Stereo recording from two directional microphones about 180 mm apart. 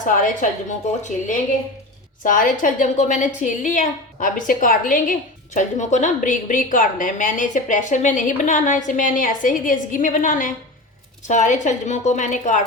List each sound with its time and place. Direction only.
0.0 s a woman's voice: 45° left (ahead or behind)
2.2 s a woman's voice: 50° left (ahead or behind)